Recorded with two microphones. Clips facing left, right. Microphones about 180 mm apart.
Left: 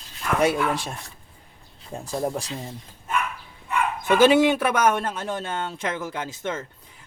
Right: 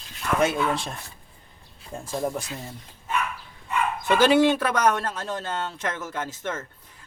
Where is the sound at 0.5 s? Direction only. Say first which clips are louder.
Left 1 dB; 10° left (ahead or behind).